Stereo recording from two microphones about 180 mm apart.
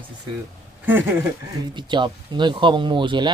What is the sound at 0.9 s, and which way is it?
Speech, 10° right (ahead or behind).